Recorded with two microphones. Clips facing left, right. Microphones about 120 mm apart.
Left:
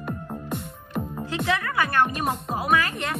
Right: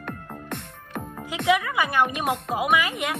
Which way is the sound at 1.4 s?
15° right (ahead or behind).